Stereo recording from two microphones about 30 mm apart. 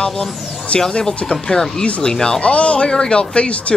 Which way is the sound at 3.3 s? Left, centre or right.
Left.